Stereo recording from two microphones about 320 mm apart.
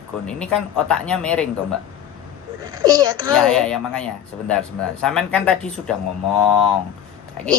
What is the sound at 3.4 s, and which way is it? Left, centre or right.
Speech, centre.